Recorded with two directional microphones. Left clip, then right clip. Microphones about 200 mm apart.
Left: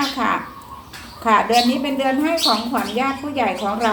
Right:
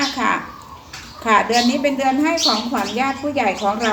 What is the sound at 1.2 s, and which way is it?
A woman's voice, 15° right (ahead or behind).